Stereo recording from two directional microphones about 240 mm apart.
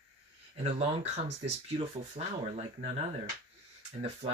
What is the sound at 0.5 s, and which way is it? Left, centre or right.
Speech, right.